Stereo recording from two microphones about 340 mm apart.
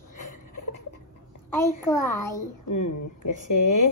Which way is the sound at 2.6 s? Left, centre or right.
Left.